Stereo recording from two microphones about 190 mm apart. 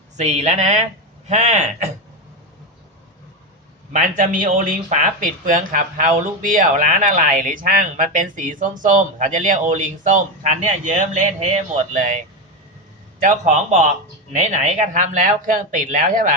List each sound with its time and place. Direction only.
0.2 s speech: 35° right (ahead or behind)
3.9 s speech: 45° right (ahead or behind)